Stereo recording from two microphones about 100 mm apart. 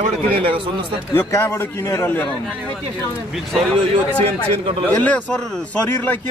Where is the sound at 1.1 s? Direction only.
30° left (ahead or behind).